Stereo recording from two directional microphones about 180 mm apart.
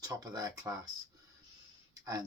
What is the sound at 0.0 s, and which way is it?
Speech, 20° right (ahead or behind).